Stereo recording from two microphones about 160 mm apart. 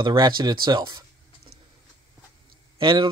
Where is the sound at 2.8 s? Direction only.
30° right (ahead or behind).